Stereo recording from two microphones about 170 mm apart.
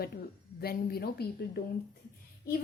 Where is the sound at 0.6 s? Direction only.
65° left (ahead or behind).